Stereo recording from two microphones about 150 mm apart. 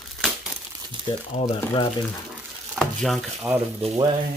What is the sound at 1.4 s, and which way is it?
Speech, 30° left (ahead or behind).